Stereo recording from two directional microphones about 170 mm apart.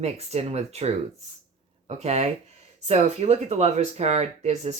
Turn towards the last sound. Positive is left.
turn(degrees=-40)  # may be behind; listen again after turning